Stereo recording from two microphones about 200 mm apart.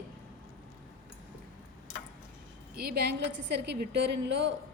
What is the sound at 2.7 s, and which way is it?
A woman's voice, 55° right (ahead or behind).